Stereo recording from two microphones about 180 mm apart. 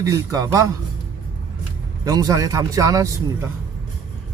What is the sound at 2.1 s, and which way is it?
A man's voice, 20° right (ahead or behind).